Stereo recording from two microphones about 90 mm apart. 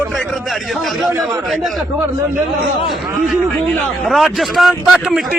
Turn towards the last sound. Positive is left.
turn(degrees=0)  # may be behind; listen again after turning